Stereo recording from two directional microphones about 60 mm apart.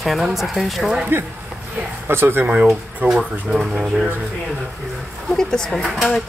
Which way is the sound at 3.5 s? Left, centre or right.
Centre.